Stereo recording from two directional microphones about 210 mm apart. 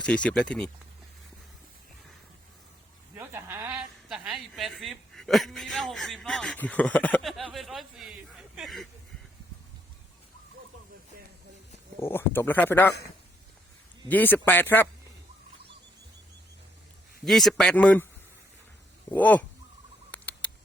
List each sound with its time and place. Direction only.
0.0 s speech: 5° left (ahead or behind)
3.2 s a sound: 10° right (ahead or behind)
4.1 s a woman's voice: 5° right (ahead or behind)
11.9 s speech: 10° left (ahead or behind)
14.1 s speech: 10° left (ahead or behind)
17.2 s speech: centre (ahead or behind)
19.1 s speech: 5° left (ahead or behind)
20.1 s a sound: 10° left (ahead or behind)